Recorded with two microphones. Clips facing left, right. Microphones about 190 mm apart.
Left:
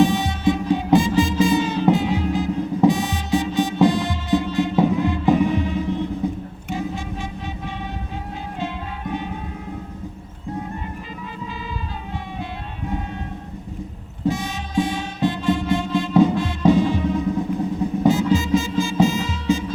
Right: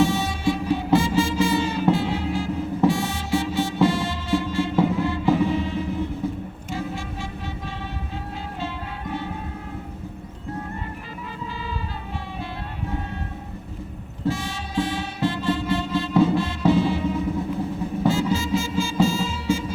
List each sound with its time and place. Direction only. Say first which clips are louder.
0.0 s music: left 3 dB; 15° left (ahead or behind)
14.3 s music: left 3 dB; 15° left (ahead or behind)